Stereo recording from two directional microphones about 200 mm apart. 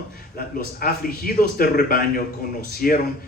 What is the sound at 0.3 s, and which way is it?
Speech, 45° left (ahead or behind).